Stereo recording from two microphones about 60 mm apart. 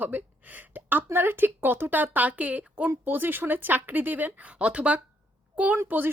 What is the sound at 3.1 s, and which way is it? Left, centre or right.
A child's voice, right.